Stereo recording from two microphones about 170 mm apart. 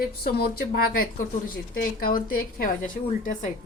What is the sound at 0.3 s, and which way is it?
A woman's voice, 65° left (ahead or behind).